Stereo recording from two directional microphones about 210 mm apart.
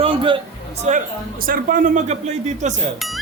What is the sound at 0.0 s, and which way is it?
Speech, 25° right (ahead or behind).